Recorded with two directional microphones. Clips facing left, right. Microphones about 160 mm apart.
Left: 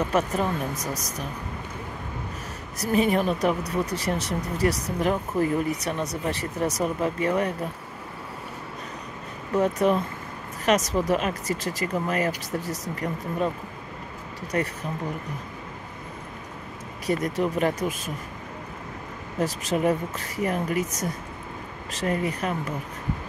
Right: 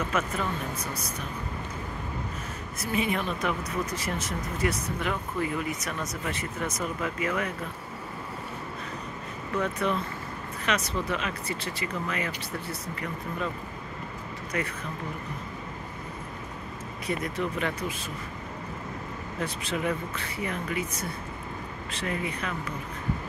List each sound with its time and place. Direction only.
0.0 s speech: 40° left (ahead or behind)
2.8 s speech: 40° left (ahead or behind)
9.5 s speech: 40° left (ahead or behind)
14.5 s speech: 40° left (ahead or behind)
17.0 s speech: 40° left (ahead or behind)
19.4 s speech: 40° left (ahead or behind)